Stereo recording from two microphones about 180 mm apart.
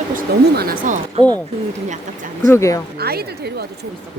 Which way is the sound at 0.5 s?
55° right (ahead or behind).